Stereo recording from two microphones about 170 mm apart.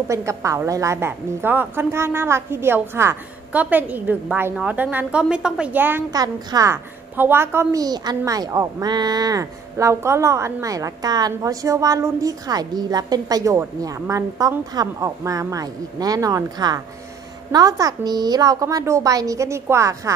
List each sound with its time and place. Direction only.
0.1 s a woman's voice: 15° right (ahead or behind)